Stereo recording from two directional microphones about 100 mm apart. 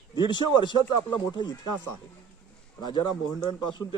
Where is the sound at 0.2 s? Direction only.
50° left (ahead or behind).